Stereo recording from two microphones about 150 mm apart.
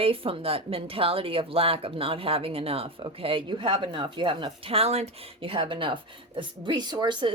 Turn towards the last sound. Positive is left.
turn(degrees=-30)  # may be behind; listen again after turning